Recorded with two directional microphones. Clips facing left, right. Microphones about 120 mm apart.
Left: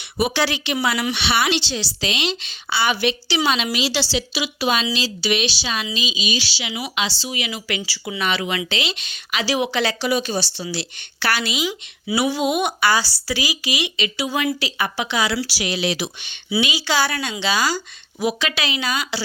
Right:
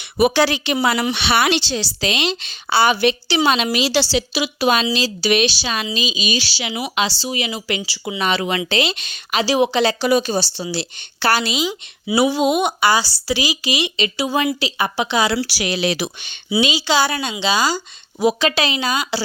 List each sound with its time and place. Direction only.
0.3 s a woman's voice: 40° right (ahead or behind)
5.2 s a woman's voice: 50° right (ahead or behind); by 8.2 s 20° right (ahead or behind)
8.2 s a woman's voice: 35° right (ahead or behind)
10.0 s a woman's voice: 45° right (ahead or behind); by 15.4 s 30° right (ahead or behind)
15.4 s a woman's voice: 55° right (ahead or behind)
16.6 s a woman's voice: 30° right (ahead or behind)